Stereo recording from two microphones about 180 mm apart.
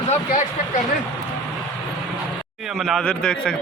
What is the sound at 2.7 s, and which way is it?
Speech, centre (ahead or behind).